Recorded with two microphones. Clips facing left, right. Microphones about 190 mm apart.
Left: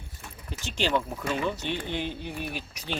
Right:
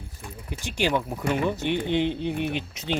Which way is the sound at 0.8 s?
10° right (ahead or behind).